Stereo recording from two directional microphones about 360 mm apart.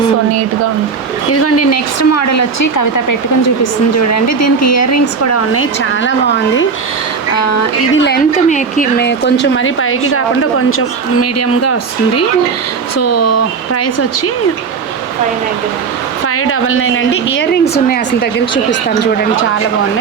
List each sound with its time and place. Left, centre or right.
1.3 s speech: left
7.3 s speech: left
7.9 s a woman's voice: left
16.2 s a woman's voice: left